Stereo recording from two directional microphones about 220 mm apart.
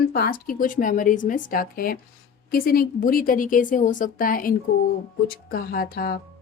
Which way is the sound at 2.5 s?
40° left (ahead or behind).